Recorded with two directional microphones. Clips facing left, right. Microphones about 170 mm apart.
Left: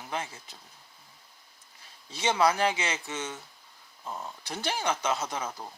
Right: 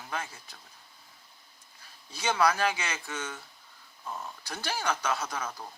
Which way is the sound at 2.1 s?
20° left (ahead or behind).